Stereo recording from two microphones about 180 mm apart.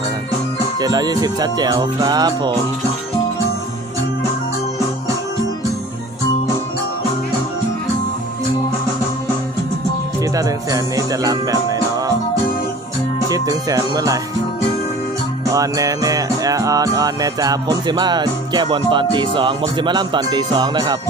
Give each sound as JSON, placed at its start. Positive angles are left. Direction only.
{"t": 0.8, "sound": "music", "side_deg": -20}
{"t": 10.3, "sound": "music", "side_deg": -20}
{"t": 13.3, "sound": "music", "side_deg": -20}
{"t": 15.5, "sound": "music", "side_deg": -20}